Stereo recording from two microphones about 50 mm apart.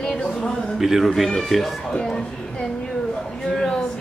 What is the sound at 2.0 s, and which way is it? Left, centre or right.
Speech, centre.